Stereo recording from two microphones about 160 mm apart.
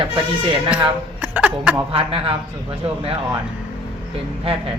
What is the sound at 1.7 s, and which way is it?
Speech, 35° right (ahead or behind).